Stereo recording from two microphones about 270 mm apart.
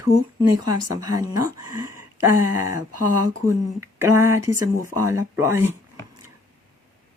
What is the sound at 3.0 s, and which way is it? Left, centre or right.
Speech, right.